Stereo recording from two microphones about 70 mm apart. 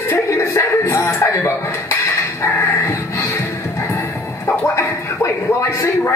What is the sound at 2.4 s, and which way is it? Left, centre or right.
Music, left.